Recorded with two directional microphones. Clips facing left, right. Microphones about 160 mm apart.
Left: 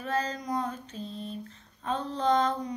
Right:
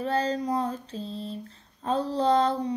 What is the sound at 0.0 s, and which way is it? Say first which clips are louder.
Child singing: right 5 dB; 30° right (ahead or behind).